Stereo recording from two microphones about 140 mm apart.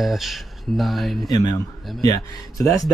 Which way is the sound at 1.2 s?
25° left (ahead or behind).